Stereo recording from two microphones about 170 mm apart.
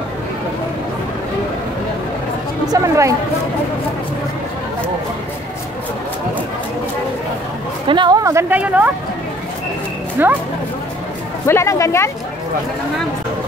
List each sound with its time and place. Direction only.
2.7 s speech: 20° right (ahead or behind)
7.9 s speech: 25° right (ahead or behind); by 8.9 s 10° right (ahead or behind)
10.2 s speech: 10° right (ahead or behind)
11.4 s speech: 15° left (ahead or behind)